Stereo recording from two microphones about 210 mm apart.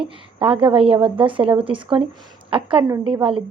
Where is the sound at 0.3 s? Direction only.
25° right (ahead or behind).